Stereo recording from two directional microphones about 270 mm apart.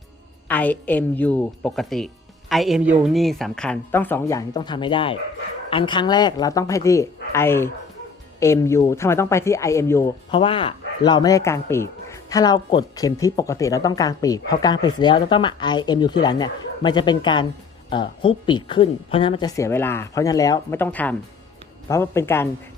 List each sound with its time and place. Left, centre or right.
0.4 s speech: centre